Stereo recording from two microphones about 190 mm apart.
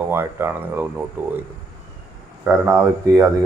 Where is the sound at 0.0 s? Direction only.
10° right (ahead or behind).